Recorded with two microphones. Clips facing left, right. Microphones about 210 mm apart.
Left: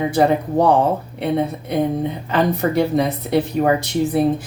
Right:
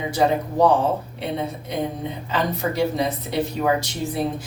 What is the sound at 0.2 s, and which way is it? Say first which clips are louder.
Speech: left 4 dB; 55° left (ahead or behind).